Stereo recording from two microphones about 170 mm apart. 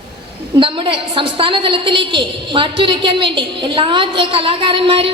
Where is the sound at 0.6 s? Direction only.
30° right (ahead or behind).